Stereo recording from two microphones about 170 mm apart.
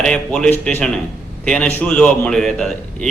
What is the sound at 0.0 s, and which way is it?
A man's voice, 5° left (ahead or behind).